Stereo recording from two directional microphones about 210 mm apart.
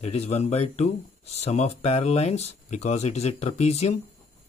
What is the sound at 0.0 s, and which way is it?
Speech, 30° left (ahead or behind).